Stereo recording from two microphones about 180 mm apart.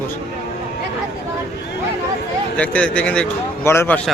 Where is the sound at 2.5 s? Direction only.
5° left (ahead or behind).